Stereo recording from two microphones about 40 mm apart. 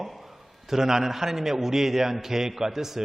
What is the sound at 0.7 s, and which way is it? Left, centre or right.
A man's voice, centre.